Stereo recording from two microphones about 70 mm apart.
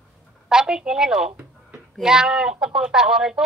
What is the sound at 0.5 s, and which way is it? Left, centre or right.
Speech, centre.